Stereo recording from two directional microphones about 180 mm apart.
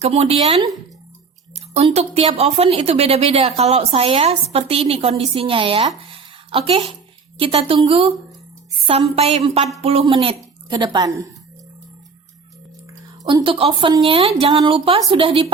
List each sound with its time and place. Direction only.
0.0 s a woman's voice: 35° right (ahead or behind)
1.7 s a woman's voice: 35° right (ahead or behind)
6.1 s a sound: 30° right (ahead or behind)
7.3 s a woman's voice: 30° right (ahead or behind)
13.2 s a woman's voice: 30° right (ahead or behind)